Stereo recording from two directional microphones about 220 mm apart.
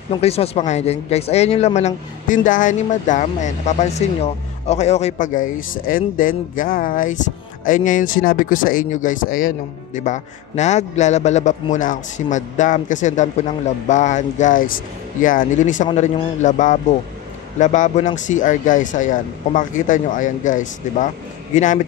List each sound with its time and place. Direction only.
0.1 s speech: 25° left (ahead or behind)